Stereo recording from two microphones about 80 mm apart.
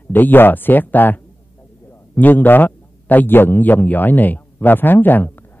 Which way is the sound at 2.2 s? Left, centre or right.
Left.